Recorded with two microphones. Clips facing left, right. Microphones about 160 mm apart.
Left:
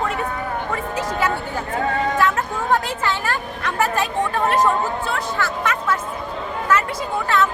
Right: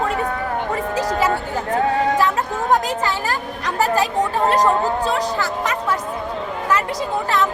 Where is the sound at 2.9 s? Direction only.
40° right (ahead or behind).